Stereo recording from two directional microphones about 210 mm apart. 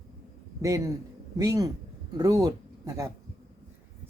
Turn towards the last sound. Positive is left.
turn(degrees=-15)  # may be behind; listen again after turning